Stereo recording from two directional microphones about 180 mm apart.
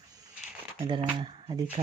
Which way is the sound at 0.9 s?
25° right (ahead or behind).